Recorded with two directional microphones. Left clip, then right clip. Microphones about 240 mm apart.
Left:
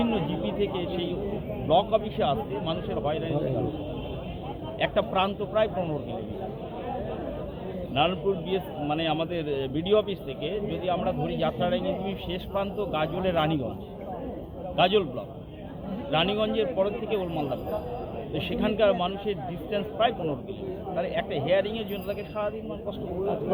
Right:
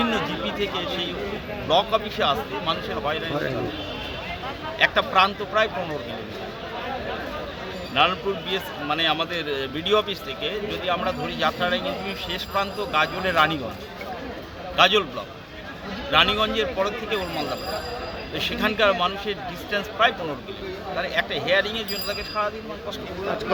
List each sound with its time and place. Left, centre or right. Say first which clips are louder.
0.0 s speech: right 4 dB; right
1.6 s speech: right 2 dB; right
1.9 s a man's voice: right 3 dB; centre
4.8 s a man's voice: right 7 dB; centre
7.9 s a man's voice: right 4 dB; centre
14.8 s a man's voice: right 5 dB; centre
16.1 s a man's voice: right 6 dB; centre
18.3 s a man's voice: right 3 dB; centre